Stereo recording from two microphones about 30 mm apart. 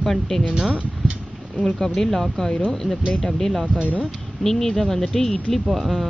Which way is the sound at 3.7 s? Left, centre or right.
Right.